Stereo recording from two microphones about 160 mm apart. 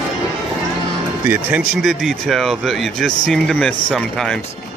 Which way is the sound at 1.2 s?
10° right (ahead or behind).